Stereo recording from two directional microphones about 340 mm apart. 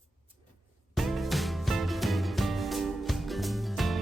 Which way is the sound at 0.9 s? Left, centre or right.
Centre.